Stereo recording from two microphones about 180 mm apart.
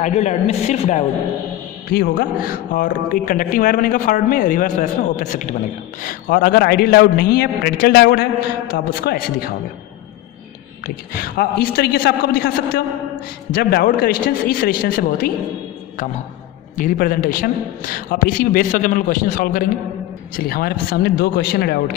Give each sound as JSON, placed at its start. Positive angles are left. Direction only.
{"t": 0.0, "sound": "a woman's voice", "side_deg": 40}
{"t": 1.9, "sound": "a man's voice", "side_deg": 55}
{"t": 11.1, "sound": "a man's voice", "side_deg": 60}
{"t": 16.7, "sound": "a man's voice", "side_deg": 50}